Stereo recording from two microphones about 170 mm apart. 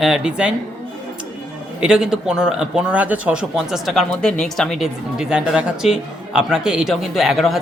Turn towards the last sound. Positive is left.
turn(degrees=0)  # may be behind; listen again after turning